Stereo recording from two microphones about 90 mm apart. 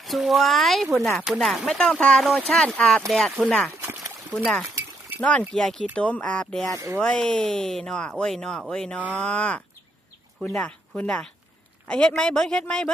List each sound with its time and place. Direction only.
0.0 s speech: centre (ahead or behind)
3.8 s a sound: 25° right (ahead or behind)
4.4 s speech: 10° left (ahead or behind)
6.7 s speech: 30° right (ahead or behind)
7.0 s speech: 10° left (ahead or behind)